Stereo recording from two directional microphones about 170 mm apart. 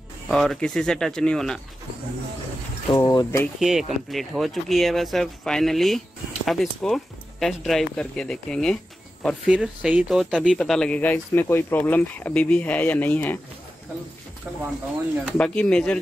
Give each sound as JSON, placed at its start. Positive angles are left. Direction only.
{"t": 0.3, "sound": "speech", "side_deg": 5}
{"t": 2.9, "sound": "speech", "side_deg": 20}
{"t": 3.5, "sound": "speech", "side_deg": 0}
{"t": 15.2, "sound": "speech", "side_deg": 5}